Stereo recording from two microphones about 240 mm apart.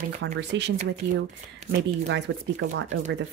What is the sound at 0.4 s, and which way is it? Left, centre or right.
Speech, right.